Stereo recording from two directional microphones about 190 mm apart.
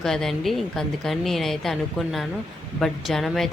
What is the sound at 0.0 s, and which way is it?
A woman's voice, centre (ahead or behind).